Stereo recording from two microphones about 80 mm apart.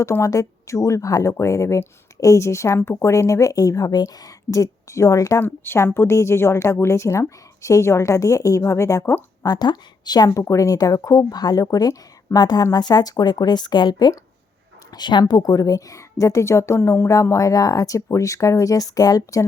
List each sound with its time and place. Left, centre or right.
0.0 s a woman's voice: left
5.4 s a woman's voice: left
9.4 s a woman's voice: left
10.2 s a woman's voice: left
15.2 s a woman's voice: left